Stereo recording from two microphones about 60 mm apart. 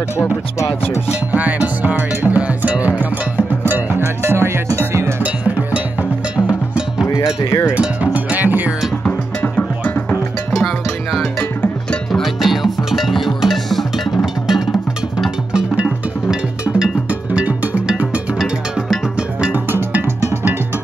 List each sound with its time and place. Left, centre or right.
1.3 s music: right
4.7 s cowbell: right
5.2 s percussion: right
7.4 s cowbell: left
7.7 s cowbell: right
9.6 s music: left
10.5 s music: centre
15.5 s music: right
18.4 s music: centre
19.5 s music: right